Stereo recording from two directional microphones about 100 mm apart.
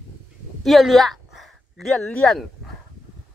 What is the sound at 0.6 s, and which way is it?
A woman's voice, centre (ahead or behind).